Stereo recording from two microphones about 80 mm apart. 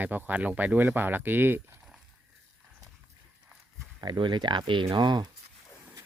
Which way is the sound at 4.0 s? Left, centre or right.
Right.